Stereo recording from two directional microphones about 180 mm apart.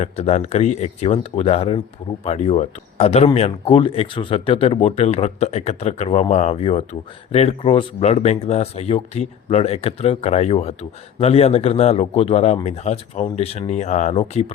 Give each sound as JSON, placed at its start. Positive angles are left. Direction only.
{"t": 0.0, "sound": "speech", "side_deg": 35}